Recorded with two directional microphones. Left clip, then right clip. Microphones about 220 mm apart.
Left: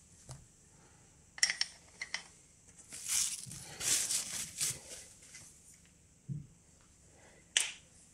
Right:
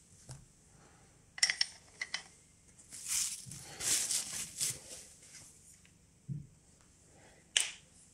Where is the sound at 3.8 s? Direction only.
5° right (ahead or behind).